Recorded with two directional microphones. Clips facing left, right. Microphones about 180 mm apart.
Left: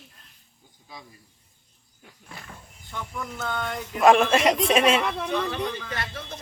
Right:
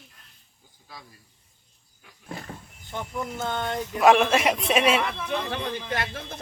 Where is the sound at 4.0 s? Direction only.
Centre (ahead or behind).